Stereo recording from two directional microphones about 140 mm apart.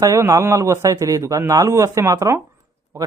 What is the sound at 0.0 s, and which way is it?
Speech, 20° right (ahead or behind).